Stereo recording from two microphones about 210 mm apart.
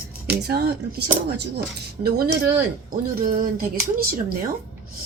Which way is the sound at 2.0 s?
45° right (ahead or behind).